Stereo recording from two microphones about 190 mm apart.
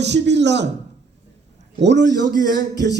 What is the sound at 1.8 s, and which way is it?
A man's voice, 65° right (ahead or behind).